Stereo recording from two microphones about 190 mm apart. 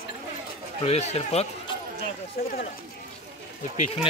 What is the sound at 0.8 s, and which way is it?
Speech, 35° left (ahead or behind).